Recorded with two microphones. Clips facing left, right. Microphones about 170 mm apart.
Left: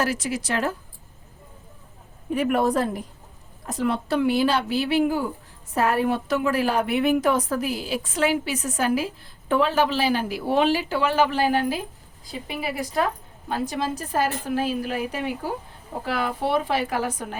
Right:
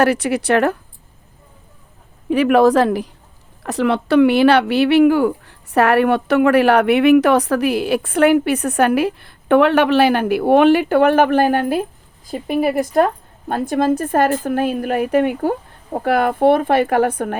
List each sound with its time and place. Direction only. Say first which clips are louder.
0.0 s speech: right 9 dB; 65° right (ahead or behind)
2.3 s a woman's voice: right 9 dB; 90° right; by 17.3 s 55° right (ahead or behind)